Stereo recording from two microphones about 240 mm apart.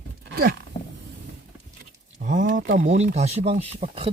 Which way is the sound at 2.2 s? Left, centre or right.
Right.